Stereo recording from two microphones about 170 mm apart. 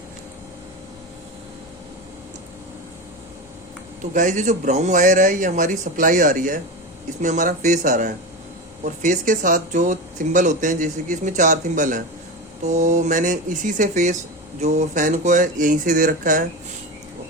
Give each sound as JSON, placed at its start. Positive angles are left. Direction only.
{"t": 4.0, "sound": "speech", "side_deg": -50}